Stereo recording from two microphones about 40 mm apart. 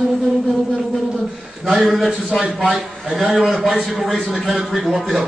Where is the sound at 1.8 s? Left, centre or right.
Centre.